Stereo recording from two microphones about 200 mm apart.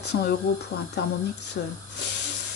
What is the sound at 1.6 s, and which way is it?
Speech, 50° left (ahead or behind).